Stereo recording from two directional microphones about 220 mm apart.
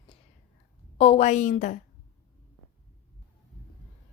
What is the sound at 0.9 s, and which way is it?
Speech, 25° left (ahead or behind).